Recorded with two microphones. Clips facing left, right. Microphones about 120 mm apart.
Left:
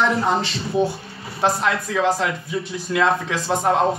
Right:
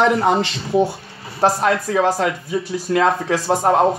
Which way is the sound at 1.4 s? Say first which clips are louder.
Right 4 dB; 45° right (ahead or behind).